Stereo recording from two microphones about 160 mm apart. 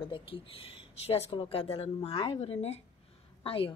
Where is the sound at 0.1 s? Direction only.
35° left (ahead or behind).